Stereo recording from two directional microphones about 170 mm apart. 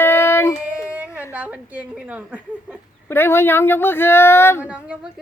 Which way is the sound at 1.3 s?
10° right (ahead or behind).